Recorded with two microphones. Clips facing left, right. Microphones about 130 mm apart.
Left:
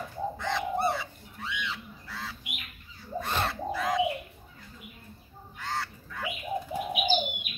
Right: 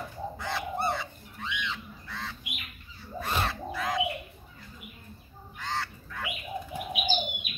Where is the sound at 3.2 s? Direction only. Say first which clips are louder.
Even; 5° right (ahead or behind).